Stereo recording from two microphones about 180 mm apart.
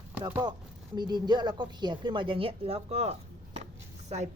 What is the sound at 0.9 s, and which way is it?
A woman's voice, 25° right (ahead or behind).